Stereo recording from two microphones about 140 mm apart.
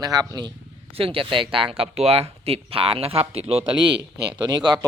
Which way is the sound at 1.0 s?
40° right (ahead or behind).